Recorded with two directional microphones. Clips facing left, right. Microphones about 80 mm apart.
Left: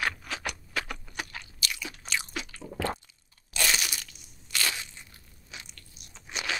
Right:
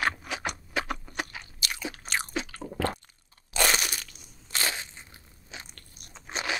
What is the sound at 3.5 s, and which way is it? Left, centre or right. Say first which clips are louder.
Crunch: right 3 dB; right.